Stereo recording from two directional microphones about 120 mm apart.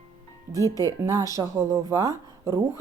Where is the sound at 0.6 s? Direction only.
25° left (ahead or behind).